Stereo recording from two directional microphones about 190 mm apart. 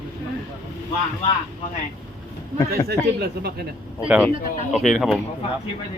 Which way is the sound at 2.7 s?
55° right (ahead or behind).